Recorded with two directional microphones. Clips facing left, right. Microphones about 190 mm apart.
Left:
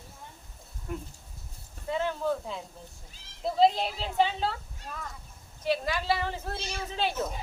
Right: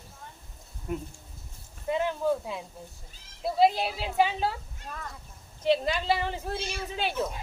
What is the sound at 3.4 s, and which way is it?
A woman's voice, 10° right (ahead or behind).